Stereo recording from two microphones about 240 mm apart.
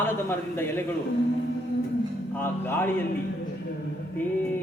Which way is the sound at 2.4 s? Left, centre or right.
Centre.